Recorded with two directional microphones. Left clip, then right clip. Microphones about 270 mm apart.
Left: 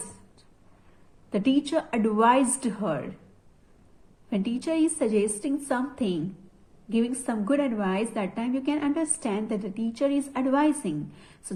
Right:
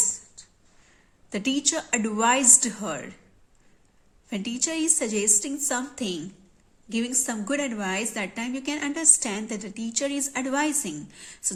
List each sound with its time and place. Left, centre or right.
1.3 s a woman's voice: centre
4.3 s a woman's voice: centre